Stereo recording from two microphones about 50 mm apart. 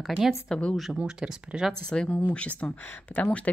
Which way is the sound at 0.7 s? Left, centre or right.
Centre.